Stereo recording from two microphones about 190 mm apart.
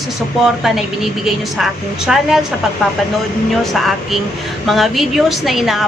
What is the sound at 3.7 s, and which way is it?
A woman's voice, centre (ahead or behind).